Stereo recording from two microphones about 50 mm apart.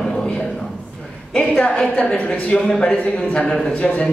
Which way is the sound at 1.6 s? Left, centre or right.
Centre.